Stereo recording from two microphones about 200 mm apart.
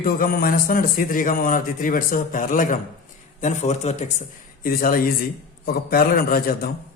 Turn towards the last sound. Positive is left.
turn(degrees=45)  # may be behind; listen again after turning